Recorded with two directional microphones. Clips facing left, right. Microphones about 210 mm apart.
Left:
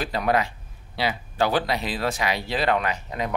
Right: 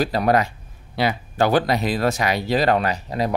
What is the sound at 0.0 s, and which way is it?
Speech, 40° right (ahead or behind).